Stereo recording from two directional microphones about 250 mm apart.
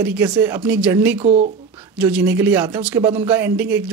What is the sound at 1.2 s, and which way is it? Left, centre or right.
Speech, right.